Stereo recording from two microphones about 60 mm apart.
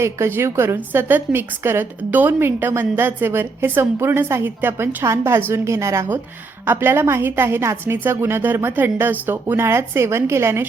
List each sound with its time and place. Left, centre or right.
0.0 s a woman's voice: right
0.8 s a woman's voice: right
5.0 s a woman's voice: right
6.7 s a woman's voice: right